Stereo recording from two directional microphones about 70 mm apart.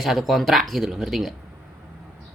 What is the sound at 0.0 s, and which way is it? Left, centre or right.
Speech, centre.